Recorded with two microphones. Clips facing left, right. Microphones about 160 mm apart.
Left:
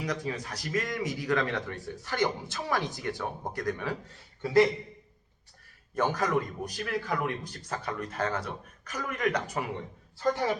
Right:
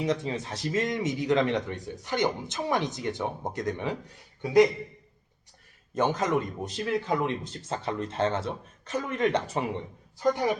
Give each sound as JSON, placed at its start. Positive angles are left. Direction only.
{"t": 0.0, "sound": "speech", "side_deg": -25}
{"t": 5.9, "sound": "speech", "side_deg": -20}
{"t": 10.2, "sound": "speech", "side_deg": -15}